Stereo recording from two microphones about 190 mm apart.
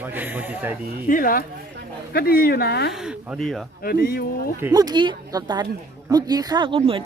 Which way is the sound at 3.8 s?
55° left (ahead or behind).